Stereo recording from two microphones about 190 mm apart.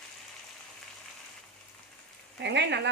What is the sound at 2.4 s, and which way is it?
Speech, 65° right (ahead or behind).